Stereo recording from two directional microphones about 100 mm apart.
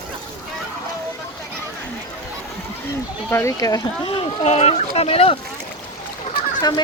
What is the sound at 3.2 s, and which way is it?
Speech, 20° left (ahead or behind).